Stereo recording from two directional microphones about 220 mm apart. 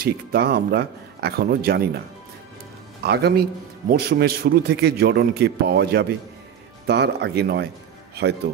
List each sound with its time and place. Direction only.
0.0 s a man's voice: 45° right (ahead or behind)
3.0 s a man's voice: 45° right (ahead or behind)